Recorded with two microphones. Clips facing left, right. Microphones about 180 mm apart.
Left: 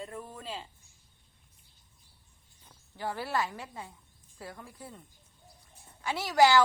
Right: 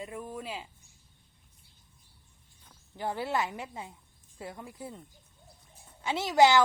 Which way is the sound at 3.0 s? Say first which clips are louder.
Right 1 dB; 20° right (ahead or behind).